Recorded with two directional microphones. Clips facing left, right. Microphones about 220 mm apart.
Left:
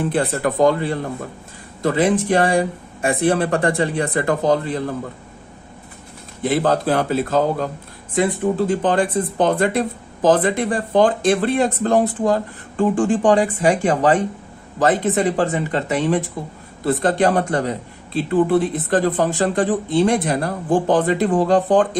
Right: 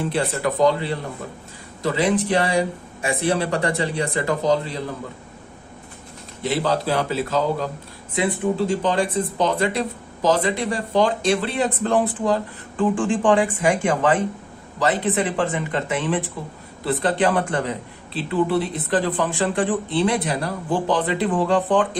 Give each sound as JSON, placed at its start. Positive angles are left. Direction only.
{"t": 0.0, "sound": "speech", "side_deg": 50}
{"t": 6.4, "sound": "speech", "side_deg": 50}